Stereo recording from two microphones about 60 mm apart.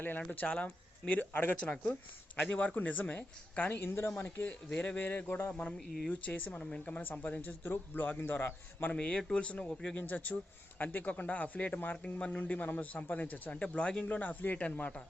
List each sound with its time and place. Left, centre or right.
0.2 s a man's voice: left
4.7 s a man's voice: centre
4.9 s a man's voice: left
6.6 s a man's voice: centre; by 8.9 s left
8.9 s a man's voice: centre